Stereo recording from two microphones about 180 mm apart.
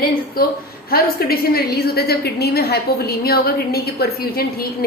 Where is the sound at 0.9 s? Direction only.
60° left (ahead or behind).